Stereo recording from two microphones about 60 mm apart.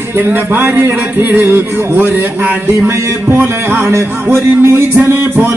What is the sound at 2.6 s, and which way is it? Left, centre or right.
Speech, right.